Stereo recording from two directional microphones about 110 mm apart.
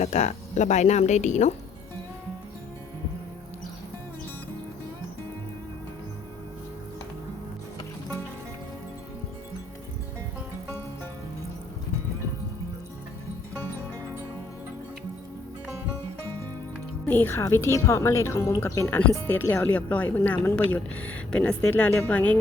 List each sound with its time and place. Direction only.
0.0 s speech: 90° left
17.1 s a woman's voice: 20° left (ahead or behind)